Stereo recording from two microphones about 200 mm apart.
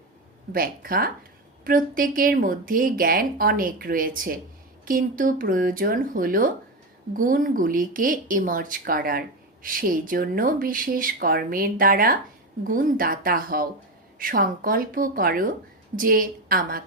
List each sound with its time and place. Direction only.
0.5 s speech: 45° right (ahead or behind)